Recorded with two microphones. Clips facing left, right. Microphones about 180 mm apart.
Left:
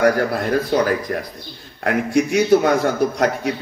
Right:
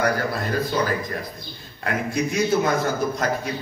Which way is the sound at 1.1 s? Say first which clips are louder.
Left 6 dB; 50° left (ahead or behind).